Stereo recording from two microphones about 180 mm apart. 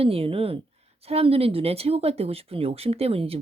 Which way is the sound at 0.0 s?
30° right (ahead or behind).